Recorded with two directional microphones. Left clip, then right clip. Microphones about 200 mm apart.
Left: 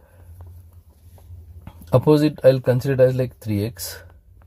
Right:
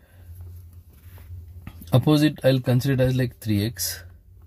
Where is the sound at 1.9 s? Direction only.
15° left (ahead or behind).